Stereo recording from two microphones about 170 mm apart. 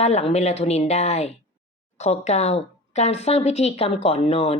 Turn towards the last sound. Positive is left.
turn(degrees=35)  # may be behind; listen again after turning